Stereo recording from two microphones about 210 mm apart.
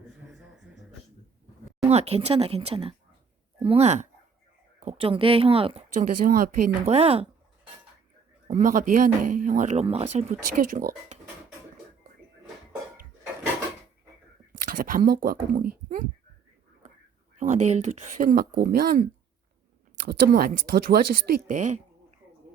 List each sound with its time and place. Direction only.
1.8 s speech: 30° right (ahead or behind)
8.4 s speech: 40° right (ahead or behind)
10.4 s speech: 40° right (ahead or behind)
14.6 s speech: 40° right (ahead or behind)
17.3 s speech: 35° right (ahead or behind)